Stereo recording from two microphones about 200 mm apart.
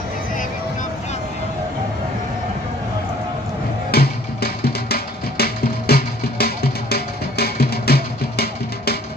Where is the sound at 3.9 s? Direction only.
50° left (ahead or behind).